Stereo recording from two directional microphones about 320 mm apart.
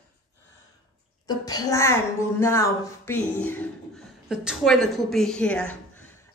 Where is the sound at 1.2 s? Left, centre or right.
Centre.